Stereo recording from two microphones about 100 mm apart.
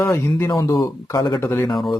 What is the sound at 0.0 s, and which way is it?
Speech, 25° left (ahead or behind).